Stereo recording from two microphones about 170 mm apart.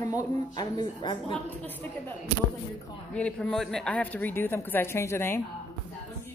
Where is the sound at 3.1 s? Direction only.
5° left (ahead or behind).